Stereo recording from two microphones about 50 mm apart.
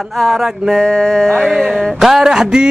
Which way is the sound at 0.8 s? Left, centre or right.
Centre.